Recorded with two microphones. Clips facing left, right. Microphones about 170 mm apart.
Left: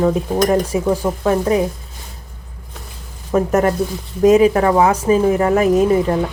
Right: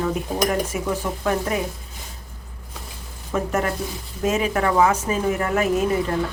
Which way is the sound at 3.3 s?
40° left (ahead or behind).